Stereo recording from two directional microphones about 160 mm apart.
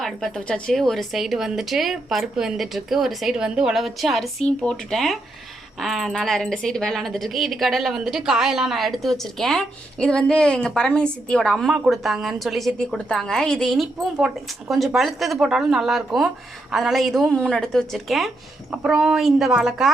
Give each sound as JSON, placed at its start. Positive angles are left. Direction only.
{"t": 0.0, "sound": "a woman's voice", "side_deg": 0}